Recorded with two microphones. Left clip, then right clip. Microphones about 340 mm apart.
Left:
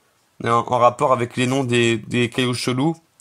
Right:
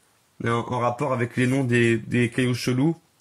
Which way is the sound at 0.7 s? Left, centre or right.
Centre.